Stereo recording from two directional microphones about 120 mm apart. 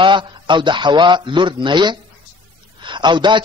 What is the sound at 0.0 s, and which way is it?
A man's voice, 40° right (ahead or behind).